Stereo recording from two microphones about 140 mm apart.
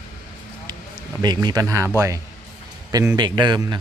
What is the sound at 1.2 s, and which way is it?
Speech, 30° right (ahead or behind).